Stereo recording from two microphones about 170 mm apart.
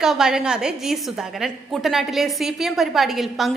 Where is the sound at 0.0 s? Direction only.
5° right (ahead or behind).